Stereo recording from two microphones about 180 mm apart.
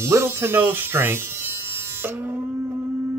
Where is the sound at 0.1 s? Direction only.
15° right (ahead or behind).